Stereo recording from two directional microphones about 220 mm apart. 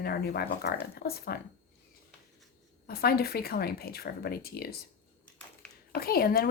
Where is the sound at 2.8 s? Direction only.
45° left (ahead or behind).